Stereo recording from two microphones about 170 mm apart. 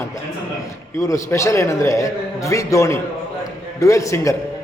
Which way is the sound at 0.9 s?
20° left (ahead or behind).